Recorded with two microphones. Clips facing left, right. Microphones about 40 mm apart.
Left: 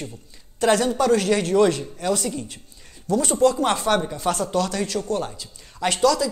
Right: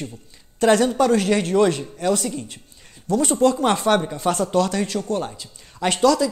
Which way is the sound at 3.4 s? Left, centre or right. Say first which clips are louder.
Even; right.